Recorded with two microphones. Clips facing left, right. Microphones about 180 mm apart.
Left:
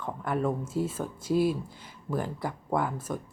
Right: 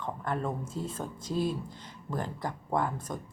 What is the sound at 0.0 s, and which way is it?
Speech, 10° left (ahead or behind).